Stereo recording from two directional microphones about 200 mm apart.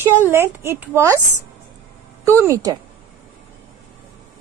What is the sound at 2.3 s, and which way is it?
Speech, 15° right (ahead or behind).